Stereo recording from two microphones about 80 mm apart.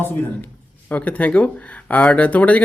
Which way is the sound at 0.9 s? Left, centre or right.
Centre.